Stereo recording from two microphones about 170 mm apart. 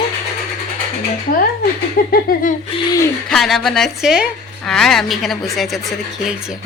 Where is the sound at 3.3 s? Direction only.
Centre (ahead or behind).